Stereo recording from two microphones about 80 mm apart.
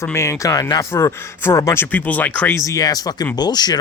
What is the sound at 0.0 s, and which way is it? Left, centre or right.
Speech, left.